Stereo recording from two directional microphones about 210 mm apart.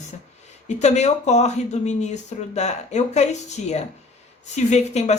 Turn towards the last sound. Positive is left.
turn(degrees=30)  # may be behind; listen again after turning